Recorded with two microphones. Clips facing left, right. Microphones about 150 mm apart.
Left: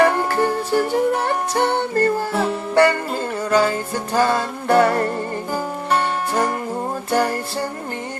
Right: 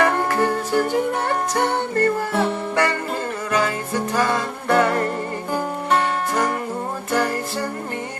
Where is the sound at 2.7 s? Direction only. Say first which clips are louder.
Left 5 dB; 30° left (ahead or behind).